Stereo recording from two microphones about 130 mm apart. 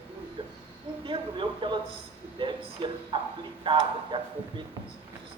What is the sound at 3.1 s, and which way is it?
Speech, 40° right (ahead or behind).